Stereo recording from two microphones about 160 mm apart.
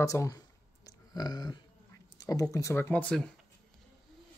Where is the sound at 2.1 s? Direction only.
20° left (ahead or behind).